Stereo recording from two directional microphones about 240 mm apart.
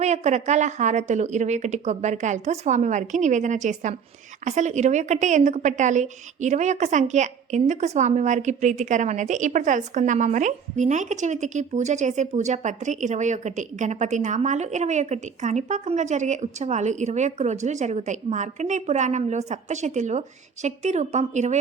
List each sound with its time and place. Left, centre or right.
0.0 s a woman's voice: right